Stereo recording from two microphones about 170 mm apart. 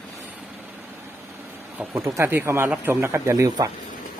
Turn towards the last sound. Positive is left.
turn(degrees=-20)  # may be behind; listen again after turning